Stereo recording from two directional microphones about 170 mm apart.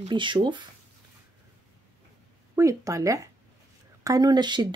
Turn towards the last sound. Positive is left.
turn(degrees=-25)  # may be behind; listen again after turning